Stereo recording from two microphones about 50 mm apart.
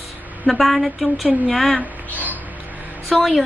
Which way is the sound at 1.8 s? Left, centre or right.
Right.